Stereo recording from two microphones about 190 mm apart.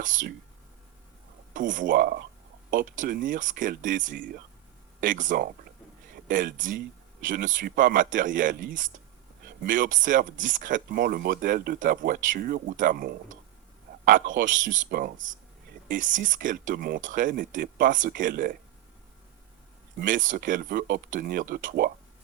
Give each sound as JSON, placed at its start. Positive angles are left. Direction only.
{"t": 0.0, "sound": "speech", "side_deg": -45}
{"t": 1.5, "sound": "speech", "side_deg": -45}
{"t": 20.0, "sound": "speech", "side_deg": -45}